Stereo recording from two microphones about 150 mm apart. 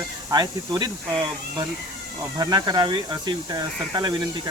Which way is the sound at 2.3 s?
25° right (ahead or behind).